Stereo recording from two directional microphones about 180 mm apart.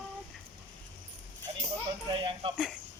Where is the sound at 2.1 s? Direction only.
30° right (ahead or behind).